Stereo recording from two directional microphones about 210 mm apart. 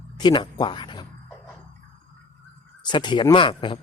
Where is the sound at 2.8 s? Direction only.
20° left (ahead or behind).